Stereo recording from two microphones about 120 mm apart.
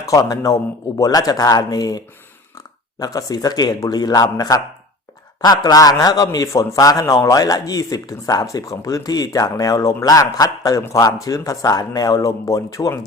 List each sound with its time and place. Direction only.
0.0 s speech: 30° left (ahead or behind)